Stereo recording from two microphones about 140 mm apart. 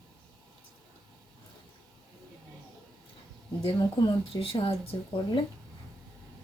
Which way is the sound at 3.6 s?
40° left (ahead or behind).